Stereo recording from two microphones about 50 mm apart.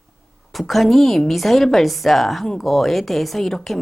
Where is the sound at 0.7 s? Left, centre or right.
Centre.